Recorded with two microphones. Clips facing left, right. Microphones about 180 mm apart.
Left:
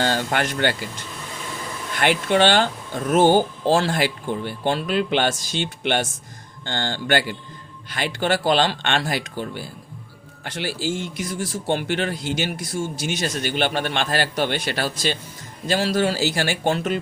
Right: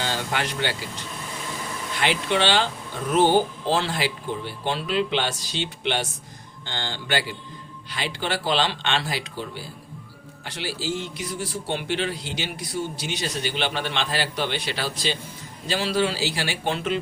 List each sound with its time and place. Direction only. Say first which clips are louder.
0.0 s speech: left 5 dB; 50° left (ahead or behind)
2.0 s a man's voice: left 5 dB; 55° left (ahead or behind)
3.7 s a man's voice: left 5 dB; 45° left (ahead or behind)